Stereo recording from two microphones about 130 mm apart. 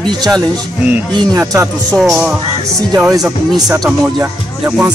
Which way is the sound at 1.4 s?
20° right (ahead or behind).